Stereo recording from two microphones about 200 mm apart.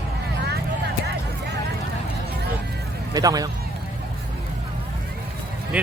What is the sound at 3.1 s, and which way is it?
Speech, 20° right (ahead or behind).